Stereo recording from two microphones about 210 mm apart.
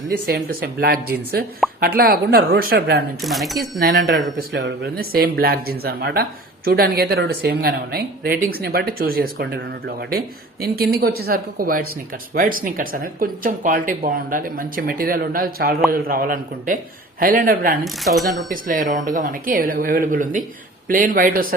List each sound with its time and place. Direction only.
0.3 s speech: 45° right (ahead or behind)
3.2 s speech: centre (ahead or behind)
3.6 s speech: 45° right (ahead or behind)
17.8 s speech: centre (ahead or behind)
18.5 s speech: 40° right (ahead or behind)